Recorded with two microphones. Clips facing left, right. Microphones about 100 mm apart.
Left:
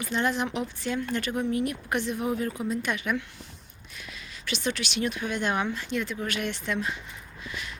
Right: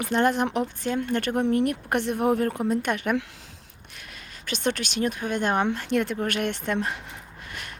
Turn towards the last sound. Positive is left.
turn(degrees=-55)  # may be behind; listen again after turning